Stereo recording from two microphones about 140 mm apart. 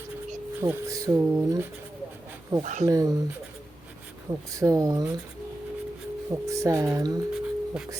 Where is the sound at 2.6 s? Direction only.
65° right (ahead or behind).